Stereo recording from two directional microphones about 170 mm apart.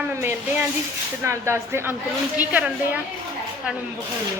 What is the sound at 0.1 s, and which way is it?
A woman's voice, 15° right (ahead or behind).